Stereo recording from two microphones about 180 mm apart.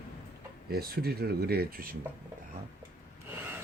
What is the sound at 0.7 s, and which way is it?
Speech, 60° right (ahead or behind).